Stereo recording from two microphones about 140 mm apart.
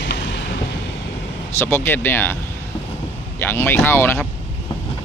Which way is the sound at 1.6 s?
15° left (ahead or behind).